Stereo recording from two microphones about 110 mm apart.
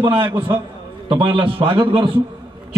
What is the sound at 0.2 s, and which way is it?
Speech, 25° right (ahead or behind).